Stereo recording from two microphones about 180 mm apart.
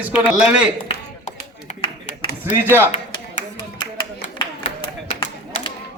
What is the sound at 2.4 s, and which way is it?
Speech, 10° right (ahead or behind).